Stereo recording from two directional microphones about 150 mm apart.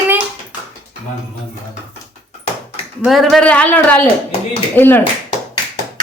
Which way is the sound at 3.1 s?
Centre (ahead or behind).